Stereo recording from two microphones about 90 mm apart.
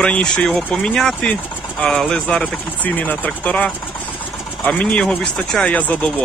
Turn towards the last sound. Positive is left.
turn(degrees=15)  # may be behind; listen again after turning